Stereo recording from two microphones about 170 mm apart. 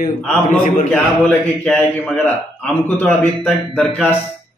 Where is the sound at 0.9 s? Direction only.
10° left (ahead or behind).